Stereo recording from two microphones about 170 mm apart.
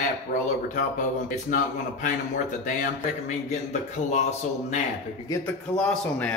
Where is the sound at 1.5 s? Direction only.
50° left (ahead or behind).